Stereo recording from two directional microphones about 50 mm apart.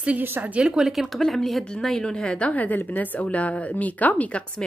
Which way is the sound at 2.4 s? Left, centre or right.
Left.